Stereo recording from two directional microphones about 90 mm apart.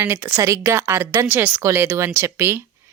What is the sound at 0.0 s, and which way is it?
A woman's voice, 25° right (ahead or behind).